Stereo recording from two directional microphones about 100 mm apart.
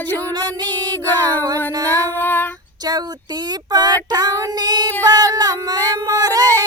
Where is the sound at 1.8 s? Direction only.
35° right (ahead or behind).